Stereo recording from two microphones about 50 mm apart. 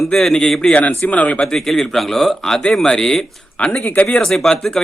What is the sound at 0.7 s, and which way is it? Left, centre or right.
Speech, left.